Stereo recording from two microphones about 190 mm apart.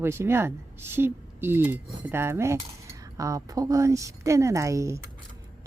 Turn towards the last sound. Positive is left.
turn(degrees=-15)  # may be behind; listen again after turning